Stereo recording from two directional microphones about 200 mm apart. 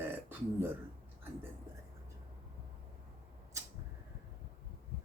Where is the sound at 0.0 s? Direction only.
10° right (ahead or behind).